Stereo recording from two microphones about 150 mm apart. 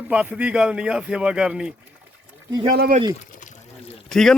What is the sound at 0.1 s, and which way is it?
Speech, 10° right (ahead or behind).